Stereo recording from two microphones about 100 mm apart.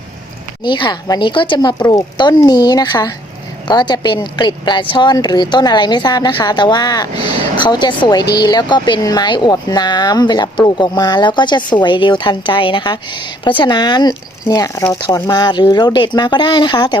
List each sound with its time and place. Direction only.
0.6 s a woman's voice: 50° left (ahead or behind)